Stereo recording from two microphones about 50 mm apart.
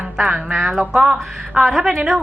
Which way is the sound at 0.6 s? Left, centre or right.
Centre.